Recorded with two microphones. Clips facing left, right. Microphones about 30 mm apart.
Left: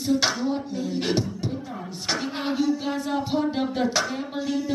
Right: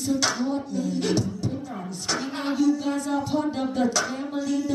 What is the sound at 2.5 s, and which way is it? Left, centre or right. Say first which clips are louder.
Speech: right 3 dB; left.